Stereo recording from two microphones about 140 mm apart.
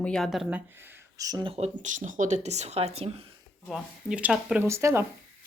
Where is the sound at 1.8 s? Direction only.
65° right (ahead or behind); by 3.2 s 45° right (ahead or behind).